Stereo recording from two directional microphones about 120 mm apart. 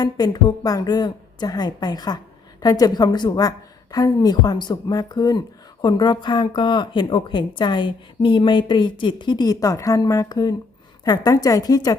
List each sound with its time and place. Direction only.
0.0 s speech: 35° left (ahead or behind)